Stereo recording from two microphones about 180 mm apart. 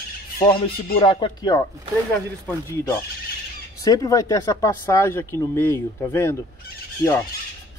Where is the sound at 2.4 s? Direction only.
10° left (ahead or behind).